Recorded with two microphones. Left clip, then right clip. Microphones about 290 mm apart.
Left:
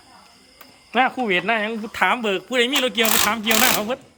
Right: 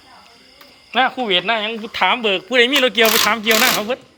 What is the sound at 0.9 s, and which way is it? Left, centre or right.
Speech, centre.